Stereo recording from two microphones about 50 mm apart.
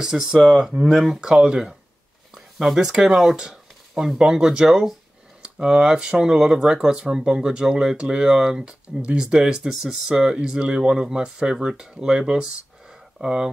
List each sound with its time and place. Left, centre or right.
0.0 s speech: centre